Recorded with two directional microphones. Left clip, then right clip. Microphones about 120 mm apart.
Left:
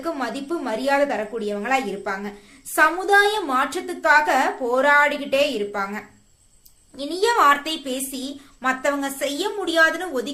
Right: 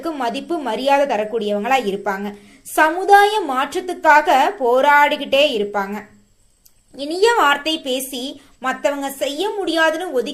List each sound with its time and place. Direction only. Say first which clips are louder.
0.0 s a woman's voice: right 4 dB; 25° right (ahead or behind)
8.6 s a woman's voice: right 2 dB; 15° right (ahead or behind)